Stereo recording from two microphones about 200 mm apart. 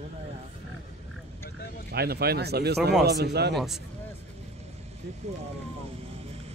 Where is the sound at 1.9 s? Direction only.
50° right (ahead or behind).